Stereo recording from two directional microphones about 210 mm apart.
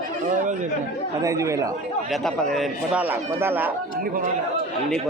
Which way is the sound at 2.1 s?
Centre (ahead or behind).